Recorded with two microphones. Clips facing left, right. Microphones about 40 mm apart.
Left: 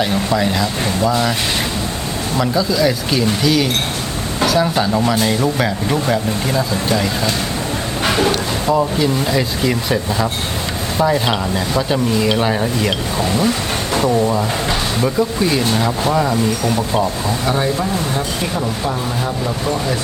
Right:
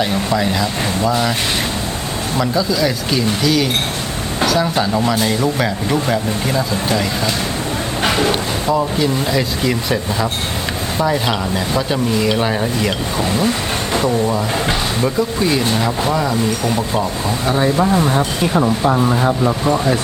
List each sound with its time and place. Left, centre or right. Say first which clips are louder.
0.3 s speech: even; centre
2.4 s speech: left 1 dB; centre
8.7 s speech: left 1 dB; centre
15.0 s speech: left 1 dB; centre
17.4 s speech: right 2 dB; centre
17.7 s speech: right 5 dB; right